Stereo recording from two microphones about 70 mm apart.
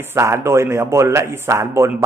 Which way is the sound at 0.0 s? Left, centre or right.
Right.